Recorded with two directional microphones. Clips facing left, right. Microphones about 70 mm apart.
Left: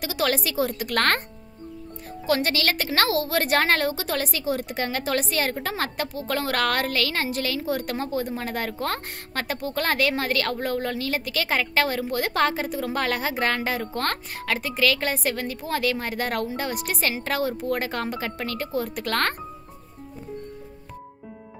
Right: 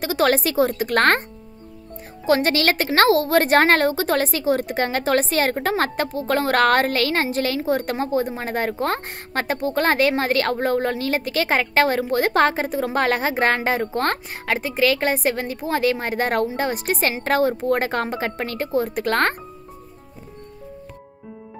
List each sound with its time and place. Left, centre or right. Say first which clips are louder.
0.0 s a woman's voice: right 6 dB; right
2.2 s a woman's voice: right 5 dB; right